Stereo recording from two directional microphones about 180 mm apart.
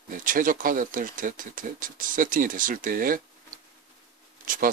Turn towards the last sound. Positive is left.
turn(degrees=-50)  # may be behind; listen again after turning